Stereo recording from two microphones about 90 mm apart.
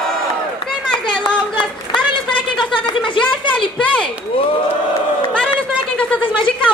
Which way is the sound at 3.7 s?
15° left (ahead or behind).